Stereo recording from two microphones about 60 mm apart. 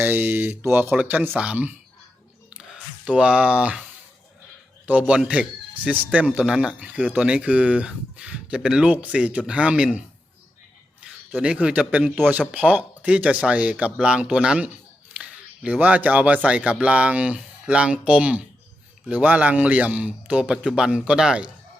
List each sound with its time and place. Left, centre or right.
0.0 s a man's voice: right
2.5 s a sound: centre
3.1 s a man's voice: centre
4.9 s a man's voice: right
11.3 s a man's voice: right
15.1 s a sound: right
16.5 s a man's voice: right